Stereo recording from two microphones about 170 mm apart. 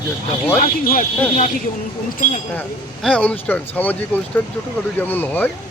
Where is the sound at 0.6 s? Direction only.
55° left (ahead or behind).